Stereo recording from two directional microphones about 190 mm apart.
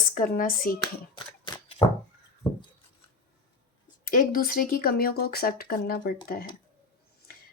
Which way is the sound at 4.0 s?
50° left (ahead or behind).